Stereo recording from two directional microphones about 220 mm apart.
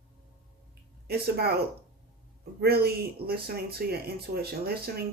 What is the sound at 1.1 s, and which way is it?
Speech, 45° right (ahead or behind).